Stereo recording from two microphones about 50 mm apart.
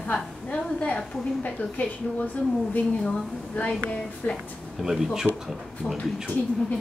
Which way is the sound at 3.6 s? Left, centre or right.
Left.